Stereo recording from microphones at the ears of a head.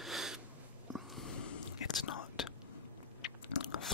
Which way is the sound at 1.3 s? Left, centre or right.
Left.